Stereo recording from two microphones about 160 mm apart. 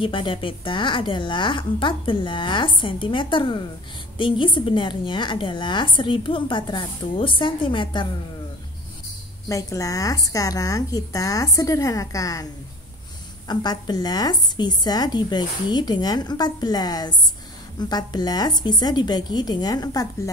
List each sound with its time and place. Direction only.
0.0 s a woman's voice: 30° left (ahead or behind)
9.5 s a woman's voice: 20° left (ahead or behind)
13.5 s a woman's voice: 25° left (ahead or behind)